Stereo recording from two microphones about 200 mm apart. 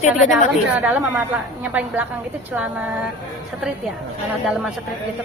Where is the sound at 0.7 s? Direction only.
10° right (ahead or behind).